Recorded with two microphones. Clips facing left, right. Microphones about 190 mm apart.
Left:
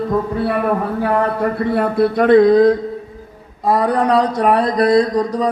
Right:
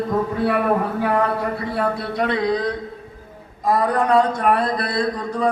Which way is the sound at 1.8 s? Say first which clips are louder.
Left 7 dB; 55° left (ahead or behind).